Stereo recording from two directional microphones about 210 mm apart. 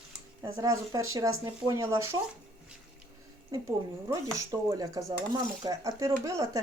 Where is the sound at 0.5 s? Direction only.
15° right (ahead or behind).